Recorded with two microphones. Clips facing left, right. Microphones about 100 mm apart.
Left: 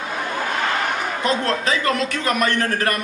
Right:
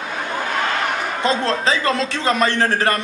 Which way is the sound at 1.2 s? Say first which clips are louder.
Right 3 dB; 30° right (ahead or behind).